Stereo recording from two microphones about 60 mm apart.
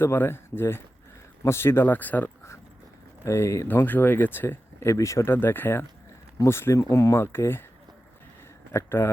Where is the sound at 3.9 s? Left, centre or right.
Left.